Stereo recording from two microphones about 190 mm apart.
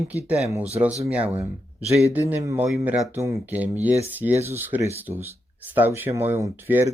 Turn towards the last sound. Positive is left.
turn(degrees=-10)  # may be behind; listen again after turning